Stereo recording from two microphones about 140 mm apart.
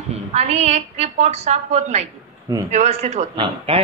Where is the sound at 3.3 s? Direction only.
40° right (ahead or behind).